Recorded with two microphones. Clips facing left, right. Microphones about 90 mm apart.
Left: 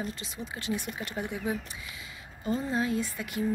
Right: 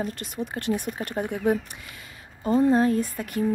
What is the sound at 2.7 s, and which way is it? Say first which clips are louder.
Speech: right 8 dB; 45° right (ahead or behind).